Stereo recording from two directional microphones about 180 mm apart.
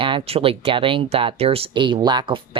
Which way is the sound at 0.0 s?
30° right (ahead or behind).